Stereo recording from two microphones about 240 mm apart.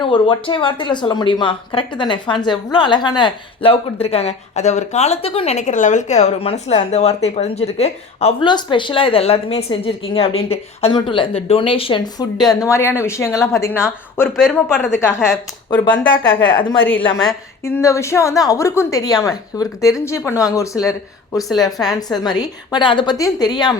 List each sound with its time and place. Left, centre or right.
0.0 s a woman's voice: left
14.3 s speech: centre
15.7 s speech: centre
16.4 s a woman's voice: centre
22.1 s a woman's voice: centre